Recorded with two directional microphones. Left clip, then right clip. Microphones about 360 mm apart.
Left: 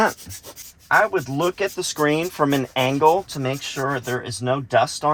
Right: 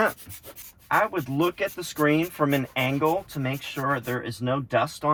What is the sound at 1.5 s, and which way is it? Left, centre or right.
Speech, left.